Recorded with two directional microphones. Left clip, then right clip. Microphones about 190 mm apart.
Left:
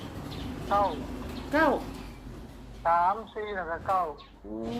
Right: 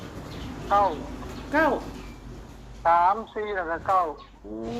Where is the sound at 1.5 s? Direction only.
5° left (ahead or behind).